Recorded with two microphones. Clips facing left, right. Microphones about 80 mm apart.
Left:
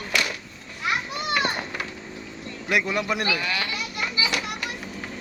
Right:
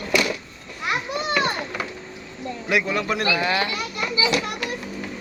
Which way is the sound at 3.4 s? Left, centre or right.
Right.